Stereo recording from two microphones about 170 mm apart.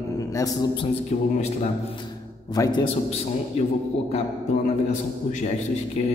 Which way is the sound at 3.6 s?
40° left (ahead or behind).